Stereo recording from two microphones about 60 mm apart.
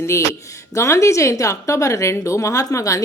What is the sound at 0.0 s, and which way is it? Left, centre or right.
A woman's voice, left.